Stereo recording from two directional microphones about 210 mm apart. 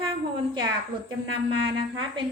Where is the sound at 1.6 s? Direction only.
25° right (ahead or behind).